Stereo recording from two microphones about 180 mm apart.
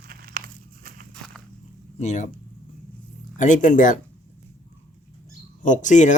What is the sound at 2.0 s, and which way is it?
Speech, 40° left (ahead or behind).